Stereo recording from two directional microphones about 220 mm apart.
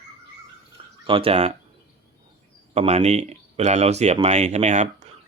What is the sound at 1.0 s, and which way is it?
Speech, 25° right (ahead or behind).